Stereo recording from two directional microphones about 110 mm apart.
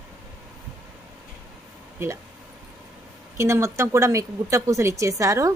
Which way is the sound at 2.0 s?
25° right (ahead or behind).